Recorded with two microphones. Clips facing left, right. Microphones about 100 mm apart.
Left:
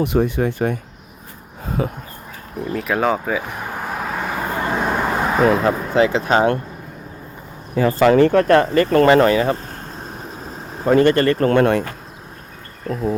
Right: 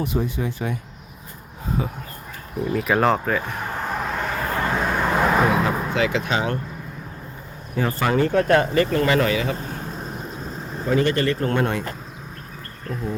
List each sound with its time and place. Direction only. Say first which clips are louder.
0.0 s speech: left 7 dB; 65° left (ahead or behind)
1.8 s speech: left 6 dB; 50° left (ahead or behind)
2.6 s vehicle: even; centre (ahead or behind)
5.6 s speech: left 6 dB; 35° left (ahead or behind)
7.8 s speech: left 8 dB; 90° left; by 9.6 s 45° left (ahead or behind)
10.0 s vehicle: even; centre (ahead or behind)
10.8 s speech: left 6 dB; 50° left (ahead or behind)
11.4 s speech: left 7 dB; 85° left
12.9 s speech: left 6 dB; 5° left (ahead or behind)